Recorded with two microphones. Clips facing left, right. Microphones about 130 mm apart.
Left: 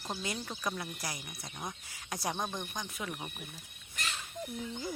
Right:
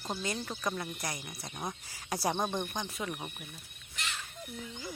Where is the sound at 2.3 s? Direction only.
20° right (ahead or behind).